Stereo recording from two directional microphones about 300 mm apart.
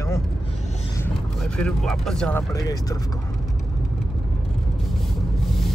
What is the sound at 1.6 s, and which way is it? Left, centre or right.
Speech, centre.